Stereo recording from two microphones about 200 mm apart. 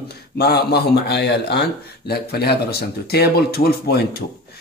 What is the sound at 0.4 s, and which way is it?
A man's voice, 55° left (ahead or behind).